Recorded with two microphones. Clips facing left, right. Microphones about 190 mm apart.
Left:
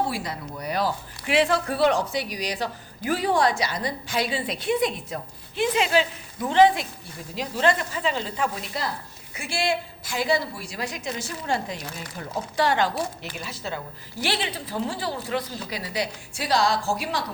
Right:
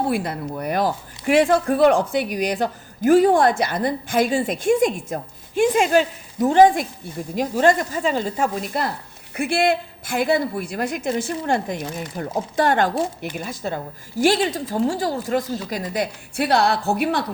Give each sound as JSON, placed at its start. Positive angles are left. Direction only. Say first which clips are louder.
{"t": 0.1, "sound": "speech", "louder": "right 8 dB", "side_deg": -55}